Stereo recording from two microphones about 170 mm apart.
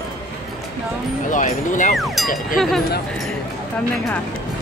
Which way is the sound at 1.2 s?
50° left (ahead or behind).